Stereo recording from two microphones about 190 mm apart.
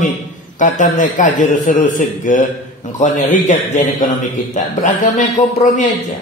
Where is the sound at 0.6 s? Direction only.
40° left (ahead or behind).